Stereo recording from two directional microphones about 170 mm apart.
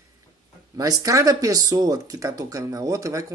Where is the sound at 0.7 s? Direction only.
20° right (ahead or behind).